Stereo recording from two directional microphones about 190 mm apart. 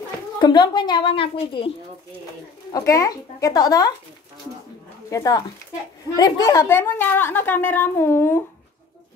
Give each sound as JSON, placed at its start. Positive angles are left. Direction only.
{"t": 0.4, "sound": "a woman's voice", "side_deg": 25}
{"t": 2.7, "sound": "a woman's voice", "side_deg": 15}
{"t": 5.1, "sound": "a woman's voice", "side_deg": 20}